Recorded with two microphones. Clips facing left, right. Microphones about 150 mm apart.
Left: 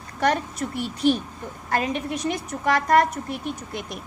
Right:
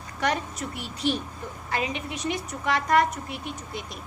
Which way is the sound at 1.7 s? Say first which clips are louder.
Left 5 dB; 45° left (ahead or behind).